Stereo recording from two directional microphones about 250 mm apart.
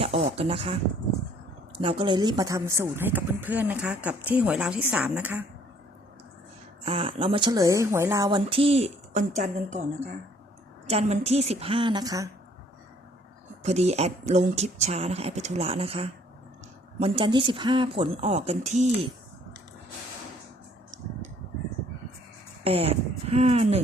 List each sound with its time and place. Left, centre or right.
0.0 s speech: right
1.8 s a woman's voice: centre
6.8 s speech: right
10.8 s speech: right
13.6 s speech: right
22.6 s speech: right